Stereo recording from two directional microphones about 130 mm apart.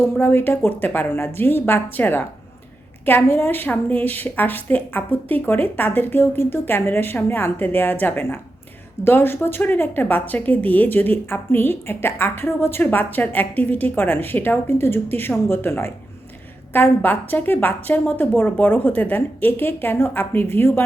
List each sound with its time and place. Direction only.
0.0 s speech: 20° left (ahead or behind)